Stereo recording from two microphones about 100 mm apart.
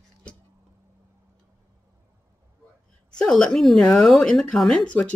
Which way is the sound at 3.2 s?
5° left (ahead or behind).